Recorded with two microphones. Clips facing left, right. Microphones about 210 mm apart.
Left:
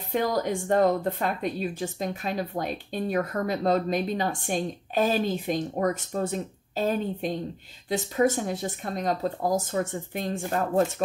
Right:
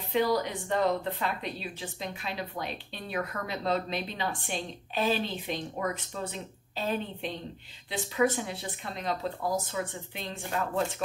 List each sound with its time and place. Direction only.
0.1 s a woman's voice: 45° left (ahead or behind)